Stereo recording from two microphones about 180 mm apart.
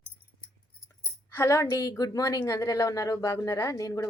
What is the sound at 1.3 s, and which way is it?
A woman's voice, 15° left (ahead or behind).